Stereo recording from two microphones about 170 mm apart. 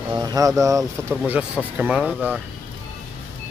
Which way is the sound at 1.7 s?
5° right (ahead or behind).